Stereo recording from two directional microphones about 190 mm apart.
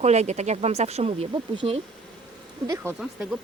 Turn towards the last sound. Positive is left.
turn(degrees=-5)  # may be behind; listen again after turning